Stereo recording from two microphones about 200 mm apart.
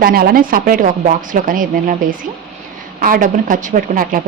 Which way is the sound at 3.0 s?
45° right (ahead or behind).